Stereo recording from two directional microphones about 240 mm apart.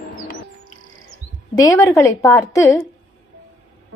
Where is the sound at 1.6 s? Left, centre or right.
Centre.